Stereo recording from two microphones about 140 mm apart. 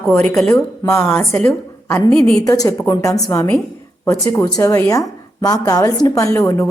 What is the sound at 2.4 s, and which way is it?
A woman's voice, 25° left (ahead or behind).